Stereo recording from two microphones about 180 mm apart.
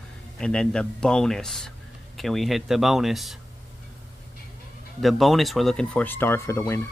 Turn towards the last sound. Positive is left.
turn(degrees=15)  # may be behind; listen again after turning